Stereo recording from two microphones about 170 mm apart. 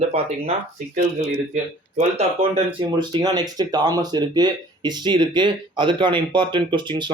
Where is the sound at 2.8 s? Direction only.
25° right (ahead or behind).